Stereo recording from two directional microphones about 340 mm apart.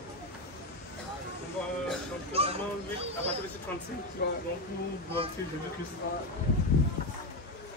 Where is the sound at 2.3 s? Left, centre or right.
Centre.